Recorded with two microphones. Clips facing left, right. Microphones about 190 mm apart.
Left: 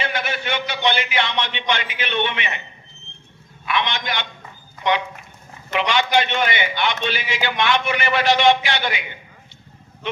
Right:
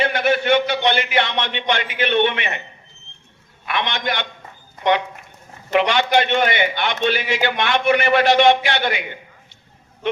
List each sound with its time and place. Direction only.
0.0 s a man's voice: 55° right (ahead or behind)
3.7 s a man's voice: 55° right (ahead or behind)